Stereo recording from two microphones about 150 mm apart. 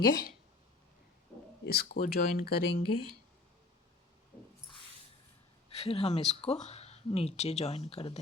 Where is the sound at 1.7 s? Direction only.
90° left.